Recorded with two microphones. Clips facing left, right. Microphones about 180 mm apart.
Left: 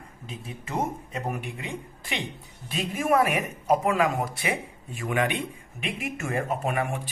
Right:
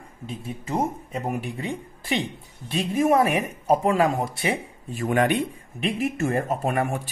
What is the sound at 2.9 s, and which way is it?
Speech, 25° right (ahead or behind).